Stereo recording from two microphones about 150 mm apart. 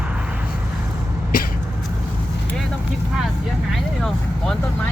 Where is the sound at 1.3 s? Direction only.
70° left (ahead or behind).